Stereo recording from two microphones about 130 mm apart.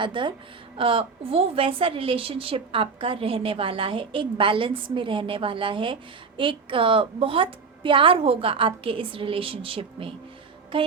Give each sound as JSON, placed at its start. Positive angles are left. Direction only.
{"t": 0.0, "sound": "a woman's voice", "side_deg": -40}